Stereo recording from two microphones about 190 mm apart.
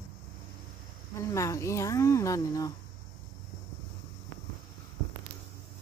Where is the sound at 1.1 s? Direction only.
15° left (ahead or behind).